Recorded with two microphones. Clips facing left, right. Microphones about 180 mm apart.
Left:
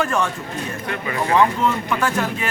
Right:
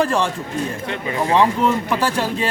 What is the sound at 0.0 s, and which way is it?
A man's voice, 30° right (ahead or behind).